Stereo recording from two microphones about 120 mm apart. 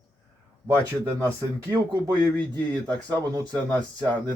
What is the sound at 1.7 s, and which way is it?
Speech, 30° right (ahead or behind).